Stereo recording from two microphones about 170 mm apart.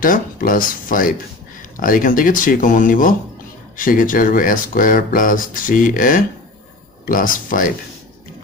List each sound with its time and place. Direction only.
0.0 s speech: 55° left (ahead or behind)